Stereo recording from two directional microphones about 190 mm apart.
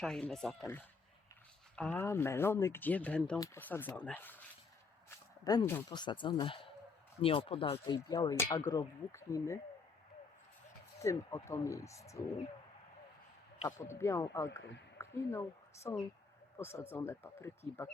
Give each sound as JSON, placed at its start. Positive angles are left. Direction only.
{"t": 0.0, "sound": "speech", "side_deg": 0}
{"t": 5.0, "sound": "a sound", "side_deg": 15}
{"t": 5.9, "sound": "speech", "side_deg": 25}
{"t": 11.0, "sound": "speech", "side_deg": 15}
{"t": 13.7, "sound": "a woman's voice", "side_deg": 15}